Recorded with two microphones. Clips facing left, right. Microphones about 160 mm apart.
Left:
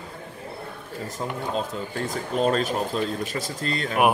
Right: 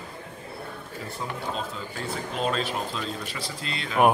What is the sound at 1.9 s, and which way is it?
Speech, 40° left (ahead or behind).